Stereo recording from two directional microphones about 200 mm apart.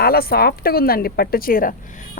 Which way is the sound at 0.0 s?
50° left (ahead or behind).